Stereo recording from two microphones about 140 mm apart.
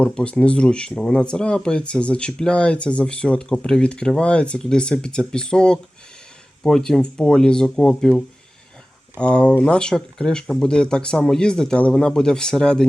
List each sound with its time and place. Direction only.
0.0 s speech: 5° left (ahead or behind)